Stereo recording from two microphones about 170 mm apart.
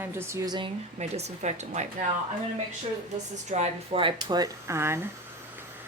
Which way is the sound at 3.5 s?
35° right (ahead or behind).